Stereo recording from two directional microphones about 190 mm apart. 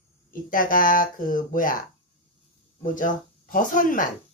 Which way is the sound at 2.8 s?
45° left (ahead or behind).